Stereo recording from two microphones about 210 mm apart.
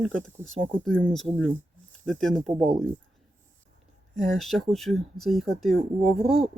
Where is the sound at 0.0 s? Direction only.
Centre (ahead or behind).